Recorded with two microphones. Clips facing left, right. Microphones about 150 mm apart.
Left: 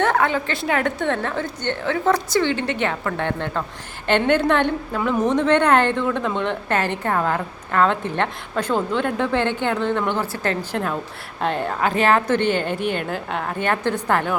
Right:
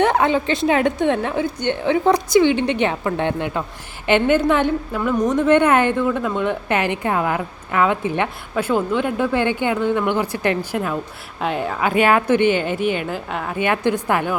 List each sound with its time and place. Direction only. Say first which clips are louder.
0.0 s a woman's voice: right 3 dB; 20° right (ahead or behind)